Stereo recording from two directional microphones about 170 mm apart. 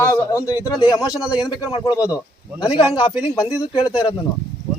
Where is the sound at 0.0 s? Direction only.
15° left (ahead or behind).